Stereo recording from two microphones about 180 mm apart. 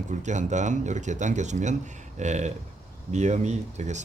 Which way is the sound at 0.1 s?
40° right (ahead or behind).